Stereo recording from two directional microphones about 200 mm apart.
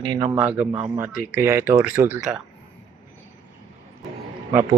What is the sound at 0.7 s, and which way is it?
Speech, 20° right (ahead or behind).